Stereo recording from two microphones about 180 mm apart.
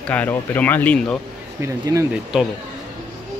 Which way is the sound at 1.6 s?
15° right (ahead or behind).